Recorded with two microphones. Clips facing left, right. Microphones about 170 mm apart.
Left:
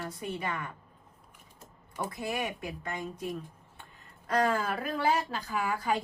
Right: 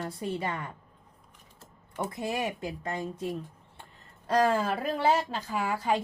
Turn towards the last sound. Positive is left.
turn(degrees=-25)  # may be behind; listen again after turning